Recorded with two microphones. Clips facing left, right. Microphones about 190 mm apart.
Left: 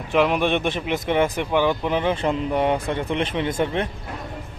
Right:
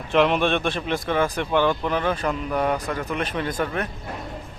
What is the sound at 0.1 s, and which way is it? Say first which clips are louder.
Speech: even; 10° left (ahead or behind).